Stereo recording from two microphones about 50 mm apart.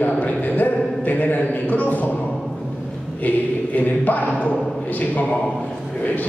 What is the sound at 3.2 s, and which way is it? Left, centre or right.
A man's voice, left.